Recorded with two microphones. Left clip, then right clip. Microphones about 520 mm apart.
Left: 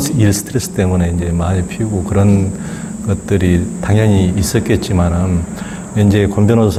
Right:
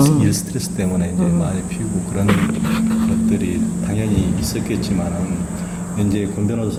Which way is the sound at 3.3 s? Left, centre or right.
Left.